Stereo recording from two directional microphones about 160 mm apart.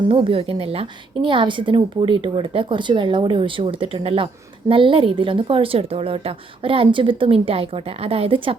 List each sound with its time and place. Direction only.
0.1 s a woman's voice: 35° right (ahead or behind)